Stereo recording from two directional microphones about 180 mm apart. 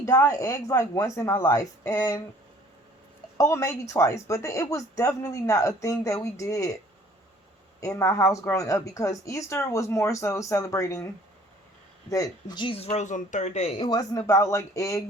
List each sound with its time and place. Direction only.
0.0 s speech: 15° left (ahead or behind)
3.3 s speech: 15° left (ahead or behind)
7.8 s speech: 15° left (ahead or behind)
12.1 s speech: 20° left (ahead or behind)